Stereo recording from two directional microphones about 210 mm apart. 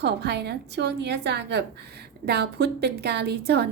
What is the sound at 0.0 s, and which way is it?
A woman's voice, 50° right (ahead or behind).